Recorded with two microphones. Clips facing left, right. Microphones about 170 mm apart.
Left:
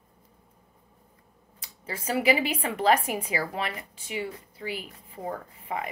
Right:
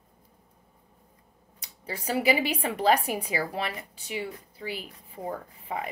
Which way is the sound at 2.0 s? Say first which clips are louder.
Left 1 dB; 35° right (ahead or behind).